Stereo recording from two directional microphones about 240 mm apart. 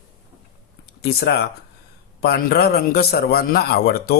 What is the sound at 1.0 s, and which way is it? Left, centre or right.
Speech, left.